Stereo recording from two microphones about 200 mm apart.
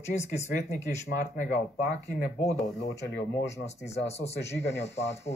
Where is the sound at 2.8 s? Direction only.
55° left (ahead or behind).